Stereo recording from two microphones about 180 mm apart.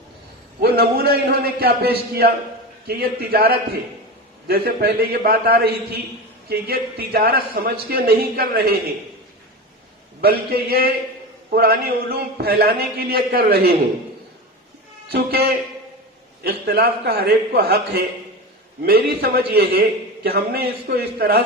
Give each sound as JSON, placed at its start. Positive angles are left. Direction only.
{"t": 0.6, "sound": "a man's voice", "side_deg": -60}
{"t": 10.2, "sound": "a man's voice", "side_deg": -60}
{"t": 15.1, "sound": "a man's voice", "side_deg": -60}